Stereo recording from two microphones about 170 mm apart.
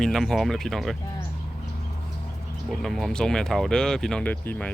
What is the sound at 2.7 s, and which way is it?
Speech, centre (ahead or behind).